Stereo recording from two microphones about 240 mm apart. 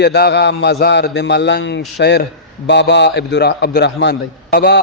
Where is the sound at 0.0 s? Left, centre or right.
Left.